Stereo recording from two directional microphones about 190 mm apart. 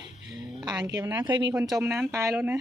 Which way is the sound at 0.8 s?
15° right (ahead or behind).